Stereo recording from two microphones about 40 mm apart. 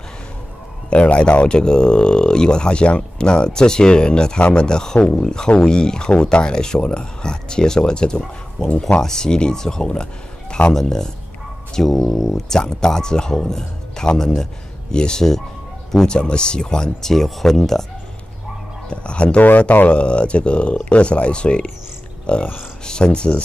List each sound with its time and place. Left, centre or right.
0.8 s speech: left; by 17.8 s centre
18.9 s speech: left